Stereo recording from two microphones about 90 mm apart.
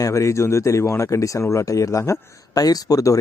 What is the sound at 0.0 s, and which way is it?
Speech, 35° left (ahead or behind).